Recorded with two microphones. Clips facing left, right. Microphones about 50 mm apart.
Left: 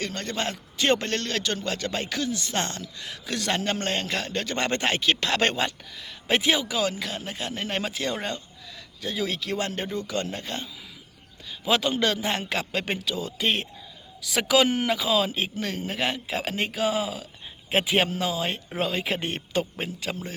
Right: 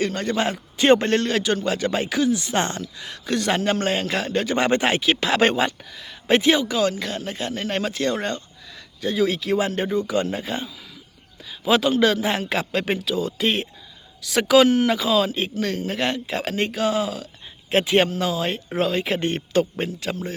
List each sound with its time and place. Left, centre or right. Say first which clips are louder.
0.0 s a man's voice: right 7 dB; centre
3.0 s a man's voice: right 7 dB; centre